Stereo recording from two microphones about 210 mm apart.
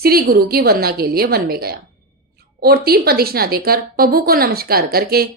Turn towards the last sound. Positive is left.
turn(degrees=-45)  # may be behind; listen again after turning